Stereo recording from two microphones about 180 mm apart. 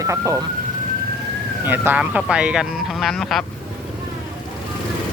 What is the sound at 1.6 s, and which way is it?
Speech, 10° right (ahead or behind).